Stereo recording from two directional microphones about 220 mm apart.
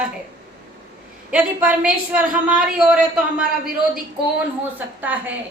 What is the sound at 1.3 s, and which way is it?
A woman's voice, 5° right (ahead or behind).